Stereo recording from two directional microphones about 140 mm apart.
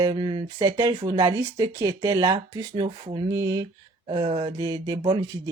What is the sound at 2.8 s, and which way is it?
Speech, 35° right (ahead or behind).